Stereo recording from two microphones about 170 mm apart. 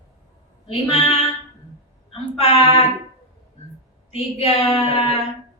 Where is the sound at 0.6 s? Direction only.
35° left (ahead or behind).